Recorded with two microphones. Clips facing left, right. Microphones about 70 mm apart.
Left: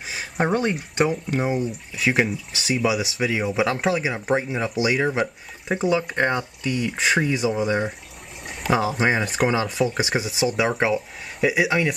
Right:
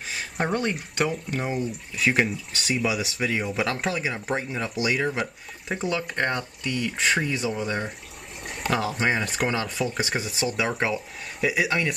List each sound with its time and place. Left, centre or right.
0.5 s speech: centre
5.7 s speech: centre